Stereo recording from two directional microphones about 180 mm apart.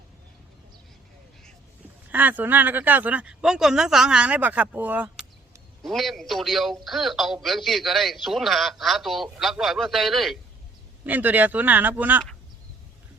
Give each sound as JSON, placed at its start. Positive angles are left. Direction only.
{"t": 2.0, "sound": "speech", "side_deg": -10}
{"t": 5.8, "sound": "a man's voice", "side_deg": 0}